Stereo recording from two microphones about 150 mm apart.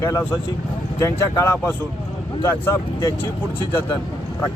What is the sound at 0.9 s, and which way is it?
Speech, 20° left (ahead or behind).